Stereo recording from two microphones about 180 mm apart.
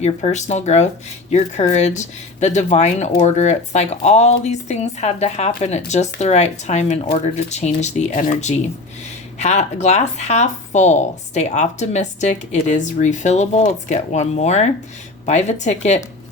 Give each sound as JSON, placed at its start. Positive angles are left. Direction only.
{"t": 0.0, "sound": "speech", "side_deg": 40}